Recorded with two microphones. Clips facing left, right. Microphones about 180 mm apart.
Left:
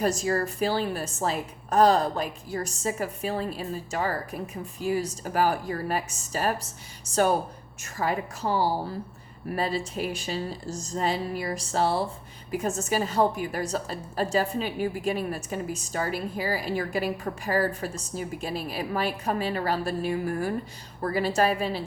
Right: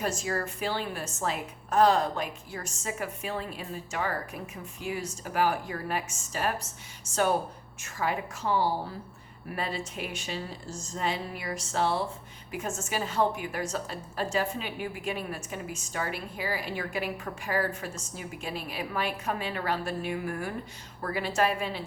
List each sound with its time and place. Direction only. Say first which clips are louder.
0.0 s a woman's voice: left 6 dB; 40° left (ahead or behind)